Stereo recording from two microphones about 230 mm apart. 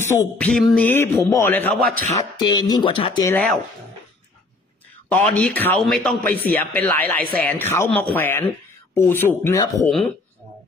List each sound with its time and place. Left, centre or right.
0.0 s speech: centre
1.8 s speech: right
2.3 s speech: centre
5.1 s speech: centre